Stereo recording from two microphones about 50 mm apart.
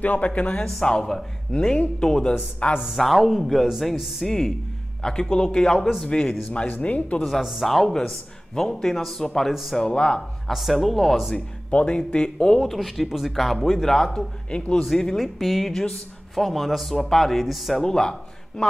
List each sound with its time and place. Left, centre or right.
0.0 s speech: left
0.7 s speech: centre
2.6 s speech: left
3.0 s speech: centre; by 7.2 s left
7.2 s speech: centre
9.5 s speech: centre
9.8 s speech: centre
10.5 s speech: centre
11.3 s speech: left; by 15.7 s centre
15.7 s speech: centre
16.3 s speech: centre
17.7 s speech: centre